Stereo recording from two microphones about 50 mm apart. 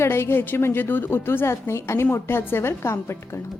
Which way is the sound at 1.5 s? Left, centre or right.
Left.